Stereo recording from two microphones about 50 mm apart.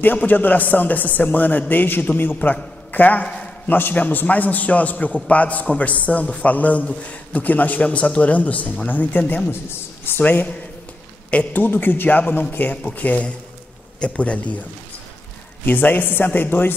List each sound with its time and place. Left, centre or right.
0.3 s a man's voice: left
9.5 s speech: left
10.2 s a man's voice: left
11.6 s a man's voice: left
15.6 s a man's voice: left